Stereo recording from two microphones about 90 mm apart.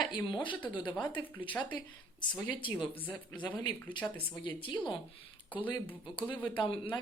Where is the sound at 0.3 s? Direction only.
65° left (ahead or behind).